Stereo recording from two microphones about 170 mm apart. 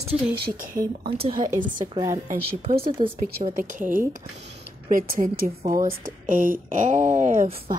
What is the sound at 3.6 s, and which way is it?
Speech, 50° right (ahead or behind).